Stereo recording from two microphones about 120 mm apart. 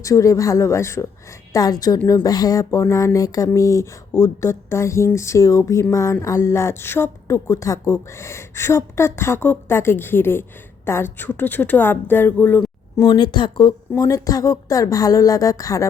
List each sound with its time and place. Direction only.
0.0 s a woman's voice: 25° left (ahead or behind)
13.0 s a woman's voice: 35° left (ahead or behind)
13.9 s speech: 30° left (ahead or behind)